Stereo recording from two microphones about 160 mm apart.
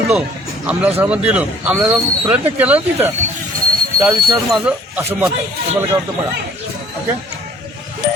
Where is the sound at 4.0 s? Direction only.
20° right (ahead or behind).